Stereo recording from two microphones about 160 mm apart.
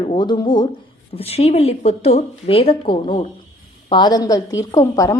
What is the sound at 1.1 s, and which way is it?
Speech, 40° left (ahead or behind).